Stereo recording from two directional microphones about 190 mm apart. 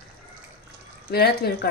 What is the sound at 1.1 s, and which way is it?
Speech, 55° left (ahead or behind).